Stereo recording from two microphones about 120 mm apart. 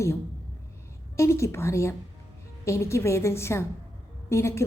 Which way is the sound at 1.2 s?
25° left (ahead or behind).